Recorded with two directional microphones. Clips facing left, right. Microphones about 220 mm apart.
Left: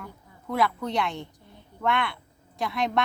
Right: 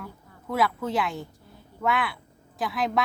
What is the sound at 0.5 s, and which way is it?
Speech, centre (ahead or behind).